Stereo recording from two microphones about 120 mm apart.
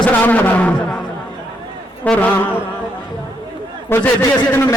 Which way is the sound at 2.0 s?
10° left (ahead or behind).